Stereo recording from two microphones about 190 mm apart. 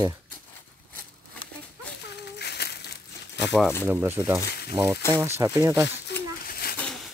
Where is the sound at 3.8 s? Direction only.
10° right (ahead or behind).